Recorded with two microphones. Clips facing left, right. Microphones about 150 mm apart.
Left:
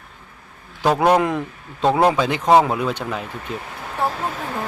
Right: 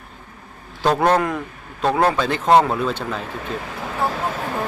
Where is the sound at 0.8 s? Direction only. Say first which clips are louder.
Left 1 dB; 10° left (ahead or behind).